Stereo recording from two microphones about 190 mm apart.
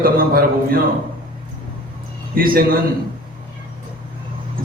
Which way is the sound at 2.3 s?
50° right (ahead or behind).